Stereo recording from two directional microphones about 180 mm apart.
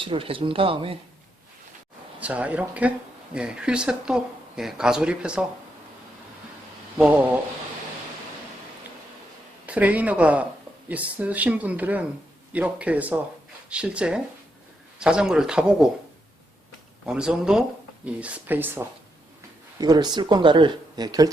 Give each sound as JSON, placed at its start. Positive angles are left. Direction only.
{"t": 0.0, "sound": "speech", "side_deg": -30}
{"t": 2.2, "sound": "speech", "side_deg": -10}
{"t": 7.0, "sound": "speech", "side_deg": -10}
{"t": 9.6, "sound": "speech", "side_deg": -10}
{"t": 17.1, "sound": "speech", "side_deg": -5}
{"t": 19.8, "sound": "speech", "side_deg": -20}